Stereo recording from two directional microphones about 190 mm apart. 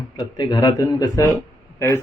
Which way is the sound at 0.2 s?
20° left (ahead or behind).